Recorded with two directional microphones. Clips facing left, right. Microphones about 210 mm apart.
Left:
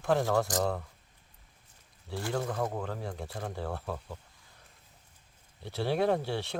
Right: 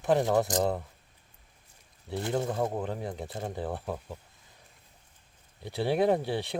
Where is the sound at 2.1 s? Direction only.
20° right (ahead or behind).